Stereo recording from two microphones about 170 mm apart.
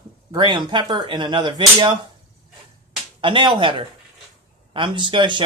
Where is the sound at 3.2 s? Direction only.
30° right (ahead or behind).